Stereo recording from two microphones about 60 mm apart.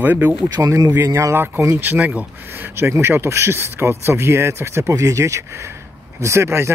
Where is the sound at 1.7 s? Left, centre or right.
Right.